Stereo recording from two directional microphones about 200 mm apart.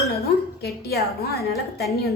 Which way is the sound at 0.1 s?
50° left (ahead or behind).